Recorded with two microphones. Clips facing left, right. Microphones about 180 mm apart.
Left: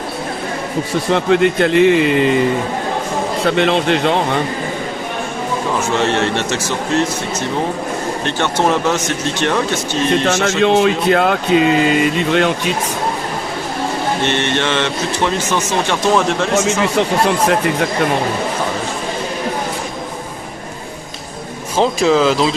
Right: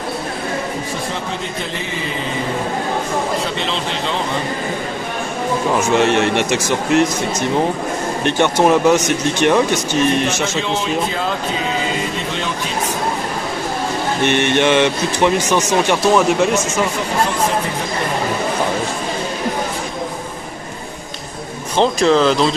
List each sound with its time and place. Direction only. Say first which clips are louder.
1.1 s speech: left 12 dB; 70° left (ahead or behind)
3.5 s a man's voice: left 8 dB; 60° left (ahead or behind)
5.9 s speech: right 2 dB; 15° right (ahead or behind)
8.2 s speech: right 4 dB; 15° right (ahead or behind)
10.4 s speech: left 8 dB; 65° left (ahead or behind)
14.3 s speech: right 7 dB; 15° right (ahead or behind)
21.8 s speech: even; 5° left (ahead or behind)